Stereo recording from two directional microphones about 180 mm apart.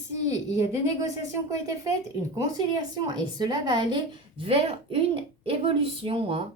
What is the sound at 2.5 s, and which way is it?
A woman's voice, 25° right (ahead or behind).